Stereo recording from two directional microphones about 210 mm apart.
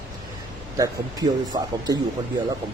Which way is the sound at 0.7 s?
15° right (ahead or behind).